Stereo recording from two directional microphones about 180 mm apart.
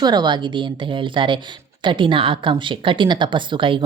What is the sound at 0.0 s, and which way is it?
Speech, 25° right (ahead or behind).